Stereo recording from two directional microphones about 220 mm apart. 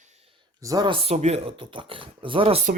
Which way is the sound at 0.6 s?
15° right (ahead or behind).